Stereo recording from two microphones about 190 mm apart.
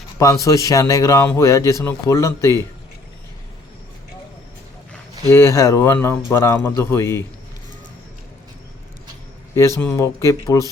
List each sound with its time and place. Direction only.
0.2 s a man's voice: 15° left (ahead or behind)
5.3 s a man's voice: 15° left (ahead or behind)
9.6 s a man's voice: 15° left (ahead or behind)